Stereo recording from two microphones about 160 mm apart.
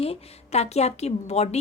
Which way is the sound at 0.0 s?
40° left (ahead or behind).